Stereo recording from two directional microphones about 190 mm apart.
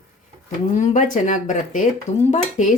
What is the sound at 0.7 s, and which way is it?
Speech, 40° left (ahead or behind).